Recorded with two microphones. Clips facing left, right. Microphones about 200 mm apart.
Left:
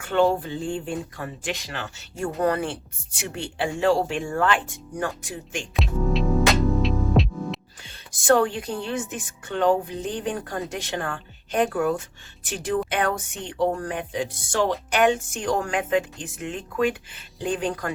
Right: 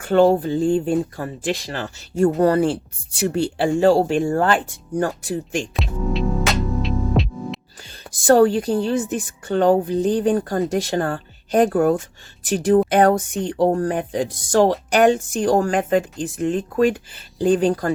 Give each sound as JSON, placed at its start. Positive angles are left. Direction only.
{"t": 0.0, "sound": "a woman's voice", "side_deg": -40}
{"t": 5.7, "sound": "music", "side_deg": 0}
{"t": 8.3, "sound": "a woman's voice", "side_deg": -35}